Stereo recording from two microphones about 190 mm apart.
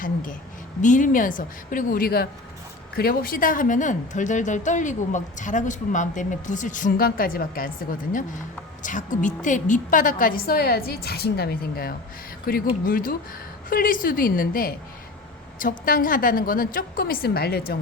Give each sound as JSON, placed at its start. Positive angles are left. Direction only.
{"t": 0.0, "sound": "a sound", "side_deg": 45}
{"t": 0.8, "sound": "a woman's voice", "side_deg": 40}
{"t": 8.8, "sound": "a woman's voice", "side_deg": 40}